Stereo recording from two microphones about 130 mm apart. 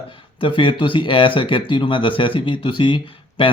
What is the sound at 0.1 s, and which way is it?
Speech, 40° left (ahead or behind).